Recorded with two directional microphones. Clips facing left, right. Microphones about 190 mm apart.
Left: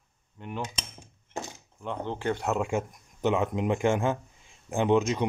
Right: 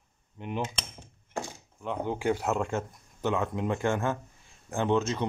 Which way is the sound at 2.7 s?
20° left (ahead or behind).